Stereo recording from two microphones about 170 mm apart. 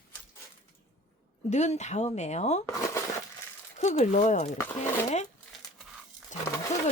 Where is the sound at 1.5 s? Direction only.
45° left (ahead or behind).